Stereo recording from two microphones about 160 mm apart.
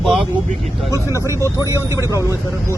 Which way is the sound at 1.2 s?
20° right (ahead or behind).